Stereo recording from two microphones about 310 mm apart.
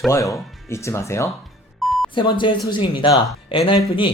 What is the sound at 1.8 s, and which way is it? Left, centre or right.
Beep, centre.